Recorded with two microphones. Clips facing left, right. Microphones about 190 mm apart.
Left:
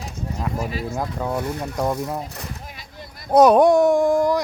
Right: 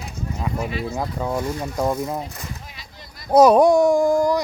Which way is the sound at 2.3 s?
50° left (ahead or behind).